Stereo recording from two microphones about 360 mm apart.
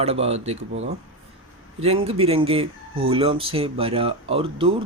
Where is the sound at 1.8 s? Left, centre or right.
Centre.